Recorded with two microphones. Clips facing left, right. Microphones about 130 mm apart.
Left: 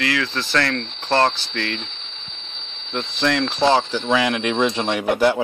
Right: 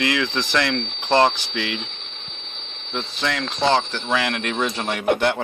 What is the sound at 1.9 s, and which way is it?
Boiling, 55° right (ahead or behind).